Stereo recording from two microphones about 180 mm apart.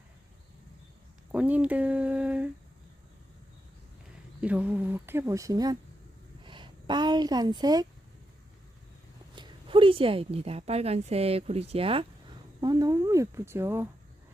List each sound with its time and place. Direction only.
1.3 s speech: 10° right (ahead or behind)
4.4 s speech: 5° right (ahead or behind)
9.3 s a woman's voice: 25° right (ahead or behind)